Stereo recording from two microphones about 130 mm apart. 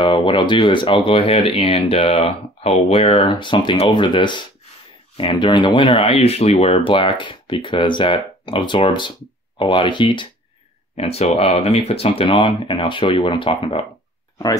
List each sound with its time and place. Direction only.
0.0 s speech: 40° left (ahead or behind)
11.0 s speech: 50° left (ahead or behind)